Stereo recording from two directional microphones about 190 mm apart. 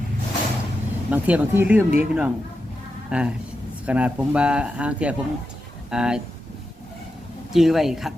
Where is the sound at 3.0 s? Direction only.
5° right (ahead or behind).